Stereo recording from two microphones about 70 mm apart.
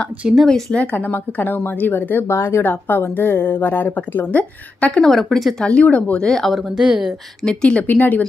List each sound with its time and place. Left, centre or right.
0.4 s speech: centre
0.9 s a woman's voice: left
2.2 s speech: left
2.6 s a woman's voice: left
5.0 s speech: centre
5.7 s speech: centre
6.5 s speech: centre
7.4 s speech: centre
7.8 s a woman's voice: left